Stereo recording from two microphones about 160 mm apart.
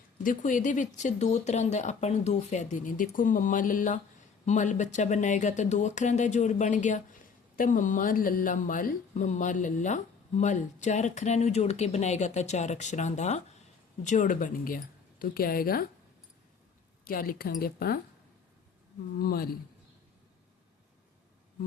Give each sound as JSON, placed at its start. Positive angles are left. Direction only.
{"t": 0.2, "sound": "speech", "side_deg": 55}
{"t": 17.0, "sound": "a woman's voice", "side_deg": 65}
{"t": 19.2, "sound": "speech", "side_deg": 70}